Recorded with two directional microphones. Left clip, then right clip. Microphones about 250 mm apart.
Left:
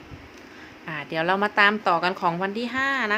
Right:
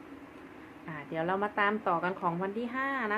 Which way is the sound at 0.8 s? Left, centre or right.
Left.